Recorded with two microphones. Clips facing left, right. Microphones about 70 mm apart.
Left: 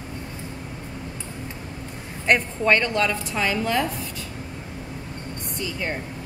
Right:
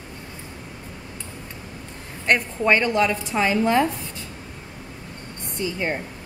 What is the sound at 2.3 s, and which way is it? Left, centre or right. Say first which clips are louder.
Speech: even; centre.